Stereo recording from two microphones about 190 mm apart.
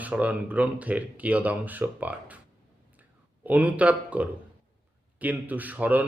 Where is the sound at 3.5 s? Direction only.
10° right (ahead or behind).